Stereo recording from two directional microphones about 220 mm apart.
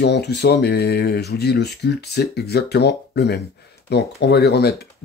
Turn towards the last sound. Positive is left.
turn(degrees=45)  # may be behind; listen again after turning